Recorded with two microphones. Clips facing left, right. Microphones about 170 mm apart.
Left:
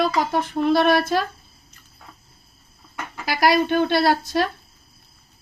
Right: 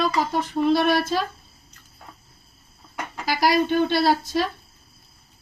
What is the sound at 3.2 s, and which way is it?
Speech, 60° left (ahead or behind).